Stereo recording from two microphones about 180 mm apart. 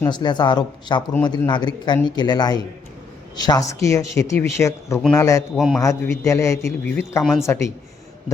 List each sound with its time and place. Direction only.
0.0 s speech: 25° left (ahead or behind)
5.5 s a man's voice: centre (ahead or behind)
5.8 s a man's voice: 15° left (ahead or behind)
7.4 s speech: 15° left (ahead or behind)